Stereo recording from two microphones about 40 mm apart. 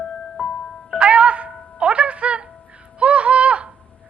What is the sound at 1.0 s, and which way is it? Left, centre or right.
Music, right.